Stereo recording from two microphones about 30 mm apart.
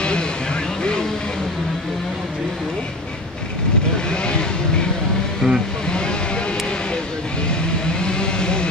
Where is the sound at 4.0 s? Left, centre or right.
Left.